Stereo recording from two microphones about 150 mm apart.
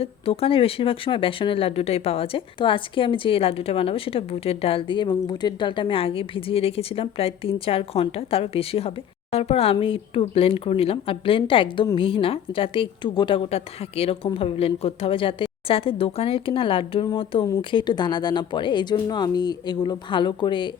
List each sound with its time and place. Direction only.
0.0 s speech: 40° left (ahead or behind)